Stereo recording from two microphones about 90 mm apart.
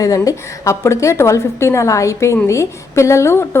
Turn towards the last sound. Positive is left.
turn(degrees=30)  # may be behind; listen again after turning